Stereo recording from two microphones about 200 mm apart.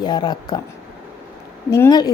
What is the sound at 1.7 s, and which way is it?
Speech, 15° left (ahead or behind).